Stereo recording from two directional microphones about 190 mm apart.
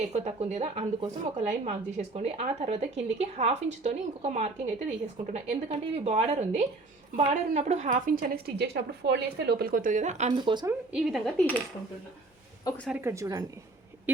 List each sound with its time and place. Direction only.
0.1 s a woman's voice: 35° right (ahead or behind)
10.3 s speech: 25° right (ahead or behind)
10.7 s speech: 5° right (ahead or behind)
12.9 s a woman's voice: 15° right (ahead or behind)